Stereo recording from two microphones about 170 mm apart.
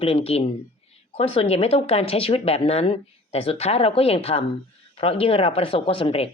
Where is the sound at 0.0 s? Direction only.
35° left (ahead or behind).